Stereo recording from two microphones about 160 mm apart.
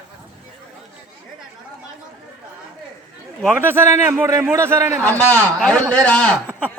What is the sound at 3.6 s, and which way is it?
A man's voice, 15° right (ahead or behind).